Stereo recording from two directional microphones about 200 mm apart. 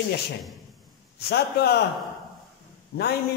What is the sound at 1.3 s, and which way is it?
Speech, 55° left (ahead or behind).